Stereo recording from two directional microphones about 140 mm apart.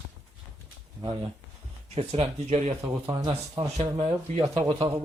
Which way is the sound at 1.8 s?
45° right (ahead or behind).